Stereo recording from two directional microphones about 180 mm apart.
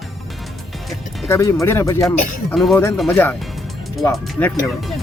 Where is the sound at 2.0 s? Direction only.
Centre (ahead or behind).